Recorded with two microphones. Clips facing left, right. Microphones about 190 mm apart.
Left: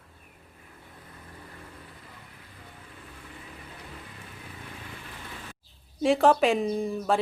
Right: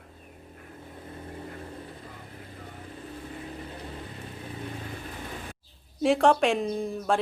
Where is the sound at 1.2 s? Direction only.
30° right (ahead or behind).